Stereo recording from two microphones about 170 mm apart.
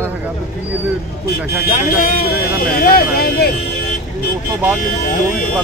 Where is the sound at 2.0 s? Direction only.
60° left (ahead or behind).